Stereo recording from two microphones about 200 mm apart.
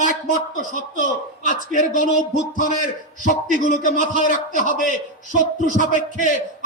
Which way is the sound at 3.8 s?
40° right (ahead or behind).